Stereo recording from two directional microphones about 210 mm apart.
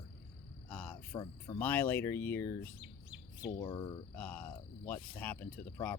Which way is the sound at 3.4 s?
25° left (ahead or behind).